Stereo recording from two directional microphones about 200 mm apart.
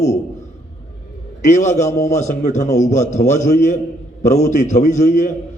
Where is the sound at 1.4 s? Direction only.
35° left (ahead or behind).